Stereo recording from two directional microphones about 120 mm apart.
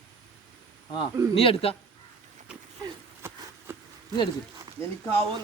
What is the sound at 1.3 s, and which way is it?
Speech, 50° left (ahead or behind).